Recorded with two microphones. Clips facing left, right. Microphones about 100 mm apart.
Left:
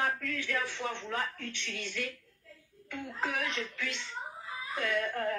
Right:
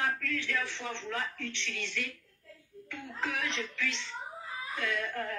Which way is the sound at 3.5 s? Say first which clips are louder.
Right 1 dB; 45° left (ahead or behind).